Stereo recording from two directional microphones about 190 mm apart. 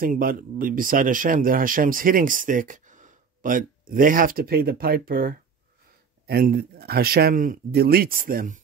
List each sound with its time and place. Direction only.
0.0 s speech: 50° right (ahead or behind)